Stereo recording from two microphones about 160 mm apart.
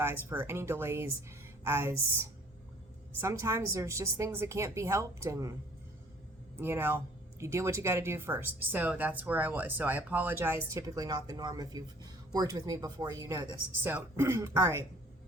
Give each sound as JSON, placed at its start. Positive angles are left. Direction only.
{"t": 0.0, "sound": "speech", "side_deg": -15}
{"t": 6.6, "sound": "speech", "side_deg": -15}